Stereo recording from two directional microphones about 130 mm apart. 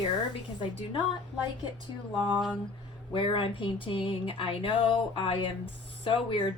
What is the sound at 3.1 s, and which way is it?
Speech, 40° left (ahead or behind).